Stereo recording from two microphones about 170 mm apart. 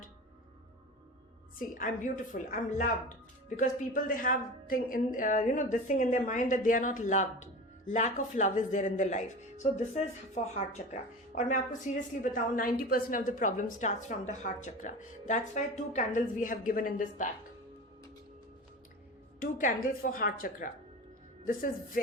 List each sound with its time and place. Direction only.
1.5 s a woman's voice: 50° left (ahead or behind)
11.3 s a woman's voice: 50° left (ahead or behind)
19.4 s a woman's voice: 55° left (ahead or behind)